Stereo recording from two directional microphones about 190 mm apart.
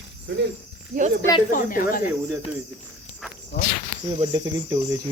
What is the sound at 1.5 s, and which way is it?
Speech, 45° left (ahead or behind).